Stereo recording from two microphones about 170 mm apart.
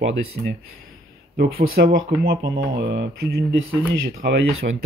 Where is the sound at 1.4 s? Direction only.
65° right (ahead or behind).